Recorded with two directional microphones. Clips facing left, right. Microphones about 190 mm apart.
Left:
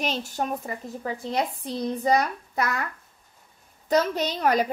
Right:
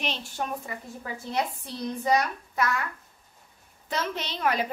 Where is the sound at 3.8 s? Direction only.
40° left (ahead or behind).